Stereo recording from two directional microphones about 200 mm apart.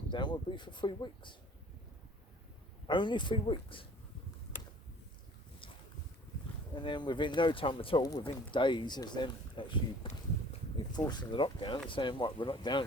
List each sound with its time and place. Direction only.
0.1 s speech: 25° left (ahead or behind)
2.8 s speech: 25° left (ahead or behind)
6.7 s speech: 25° left (ahead or behind)